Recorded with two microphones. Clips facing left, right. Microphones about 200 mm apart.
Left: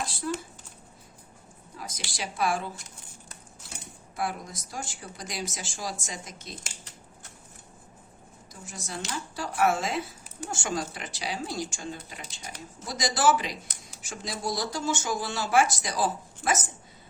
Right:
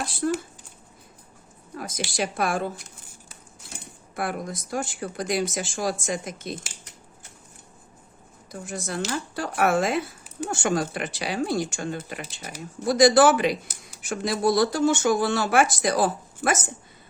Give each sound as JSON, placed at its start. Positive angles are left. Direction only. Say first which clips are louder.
{"t": 0.2, "sound": "speech", "louder": "right 7 dB", "side_deg": -60}
{"t": 1.7, "sound": "speech", "louder": "right 10 dB", "side_deg": -55}
{"t": 4.1, "sound": "speech", "louder": "right 4 dB", "side_deg": -60}
{"t": 8.6, "sound": "speech", "louder": "right 8 dB", "side_deg": -55}